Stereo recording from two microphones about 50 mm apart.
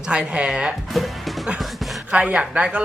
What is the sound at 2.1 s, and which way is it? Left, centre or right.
Speech, right.